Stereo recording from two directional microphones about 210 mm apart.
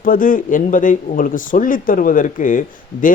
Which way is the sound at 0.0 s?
40° left (ahead or behind).